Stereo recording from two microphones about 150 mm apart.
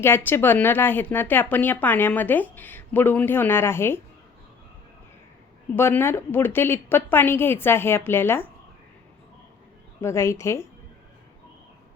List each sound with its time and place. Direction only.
0.0 s speech: 15° left (ahead or behind)
5.7 s speech: 15° left (ahead or behind)
10.0 s speech: 20° left (ahead or behind)